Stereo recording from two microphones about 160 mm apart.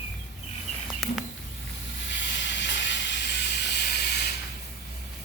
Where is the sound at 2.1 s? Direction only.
90° left.